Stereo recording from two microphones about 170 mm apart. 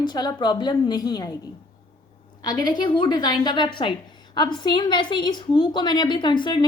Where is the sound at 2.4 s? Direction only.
25° left (ahead or behind).